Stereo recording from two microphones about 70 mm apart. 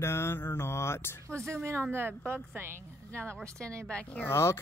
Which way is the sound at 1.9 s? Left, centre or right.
Right.